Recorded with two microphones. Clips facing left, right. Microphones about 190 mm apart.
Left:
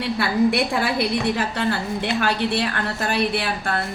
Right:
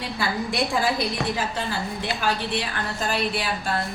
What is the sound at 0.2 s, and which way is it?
A woman's voice, 60° left (ahead or behind).